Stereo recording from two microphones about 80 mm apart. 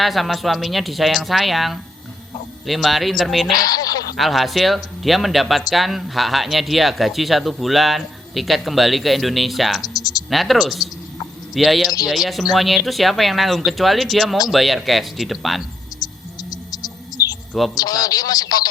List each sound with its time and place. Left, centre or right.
0.0 s speech: centre
3.5 s speech: left
4.2 s speech: centre
9.8 s speech: left
10.2 s speech: centre
16.0 s music: left
17.7 s speech: left